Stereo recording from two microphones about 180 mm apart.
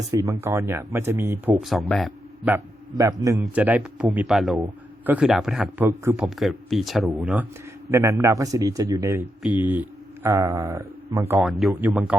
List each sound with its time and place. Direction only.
0.1 s a man's voice: 15° right (ahead or behind)
1.6 s a man's voice: centre (ahead or behind)
3.0 s a man's voice: 15° right (ahead or behind)
7.9 s a man's voice: 15° right (ahead or behind)
11.4 s a man's voice: centre (ahead or behind)